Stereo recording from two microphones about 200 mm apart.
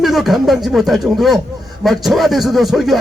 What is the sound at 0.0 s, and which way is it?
Speech, centre (ahead or behind).